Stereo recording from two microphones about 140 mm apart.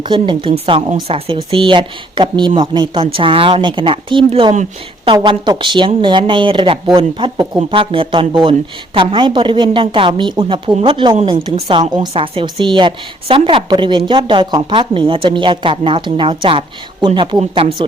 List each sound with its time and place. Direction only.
0.1 s a woman's voice: 35° right (ahead or behind)